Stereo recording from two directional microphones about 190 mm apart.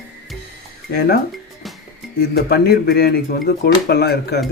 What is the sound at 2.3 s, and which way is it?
Speech, 55° left (ahead or behind).